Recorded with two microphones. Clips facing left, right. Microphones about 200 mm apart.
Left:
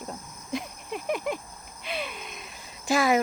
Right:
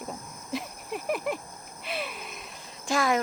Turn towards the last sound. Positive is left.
turn(degrees=5)  # may be behind; listen again after turning